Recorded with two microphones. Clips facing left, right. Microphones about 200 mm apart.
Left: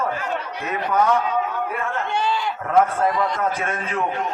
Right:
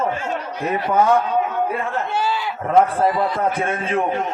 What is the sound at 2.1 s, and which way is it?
Livestock, 5° right (ahead or behind).